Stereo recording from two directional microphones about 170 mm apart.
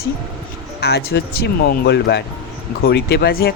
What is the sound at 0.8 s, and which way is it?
Speech, 75° left (ahead or behind).